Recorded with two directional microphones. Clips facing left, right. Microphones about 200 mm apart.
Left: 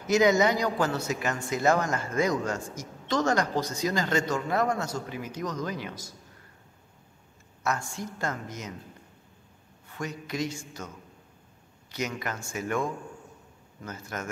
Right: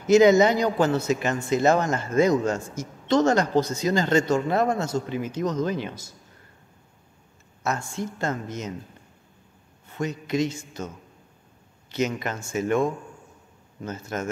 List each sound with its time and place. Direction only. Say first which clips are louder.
0.0 s speech: right 6 dB; 25° right (ahead or behind)
7.6 s speech: right 3 dB; 25° right (ahead or behind)
9.8 s speech: right 7 dB; 25° right (ahead or behind)
11.9 s speech: right 6 dB; 25° right (ahead or behind)